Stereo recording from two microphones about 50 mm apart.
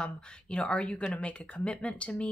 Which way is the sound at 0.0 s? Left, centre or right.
Left.